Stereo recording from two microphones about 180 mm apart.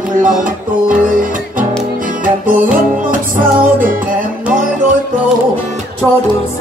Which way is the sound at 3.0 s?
50° right (ahead or behind).